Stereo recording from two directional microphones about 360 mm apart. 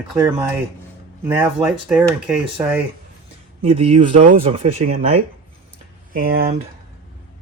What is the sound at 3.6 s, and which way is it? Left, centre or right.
Speech, centre.